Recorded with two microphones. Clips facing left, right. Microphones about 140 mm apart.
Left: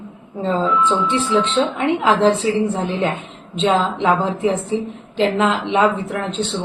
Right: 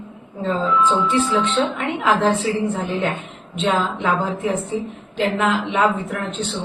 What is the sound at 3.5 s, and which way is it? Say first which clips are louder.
A woman's voice: left 3 dB; 25° left (ahead or behind).